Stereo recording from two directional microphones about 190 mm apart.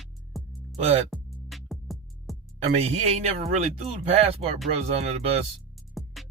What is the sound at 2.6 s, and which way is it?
Speech, 35° right (ahead or behind).